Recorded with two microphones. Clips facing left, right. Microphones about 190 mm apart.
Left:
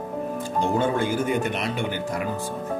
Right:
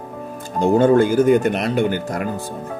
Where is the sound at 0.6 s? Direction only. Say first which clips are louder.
Right 10 dB; 45° right (ahead or behind).